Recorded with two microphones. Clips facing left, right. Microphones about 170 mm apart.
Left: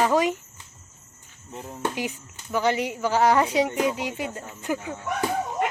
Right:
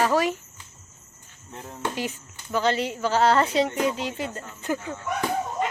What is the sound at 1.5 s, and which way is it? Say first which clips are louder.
Speech: left 2 dB; 5° left (ahead or behind).